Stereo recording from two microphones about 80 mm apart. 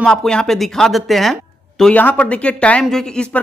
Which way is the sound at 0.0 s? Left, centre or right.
Centre.